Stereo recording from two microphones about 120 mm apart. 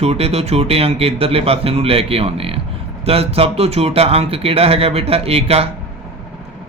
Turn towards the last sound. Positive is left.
turn(degrees=-55)  # may be behind; listen again after turning